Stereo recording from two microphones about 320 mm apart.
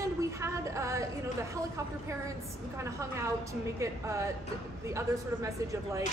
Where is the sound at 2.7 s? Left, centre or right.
Centre.